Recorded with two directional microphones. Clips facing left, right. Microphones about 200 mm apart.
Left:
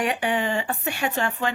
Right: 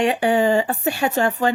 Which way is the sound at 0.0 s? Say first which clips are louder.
Right 7 dB; 30° right (ahead or behind).